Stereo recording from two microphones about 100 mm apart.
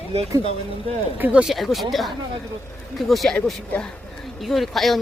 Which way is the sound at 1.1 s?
20° right (ahead or behind).